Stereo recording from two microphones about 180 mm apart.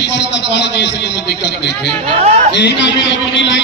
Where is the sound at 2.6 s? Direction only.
90° left.